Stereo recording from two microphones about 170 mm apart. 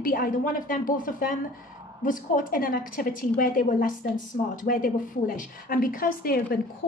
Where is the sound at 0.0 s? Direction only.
55° left (ahead or behind).